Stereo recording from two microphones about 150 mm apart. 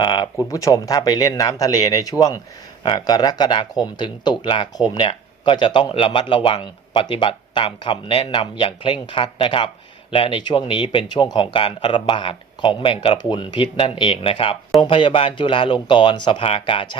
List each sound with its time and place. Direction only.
0.0 s speech: 25° left (ahead or behind)